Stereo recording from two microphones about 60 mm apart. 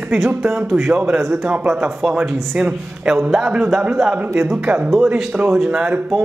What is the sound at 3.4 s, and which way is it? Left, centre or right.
Speech, centre.